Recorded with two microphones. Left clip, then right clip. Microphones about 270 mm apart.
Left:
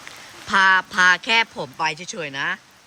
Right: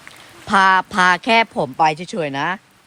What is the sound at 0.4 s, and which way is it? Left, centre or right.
Speech, centre.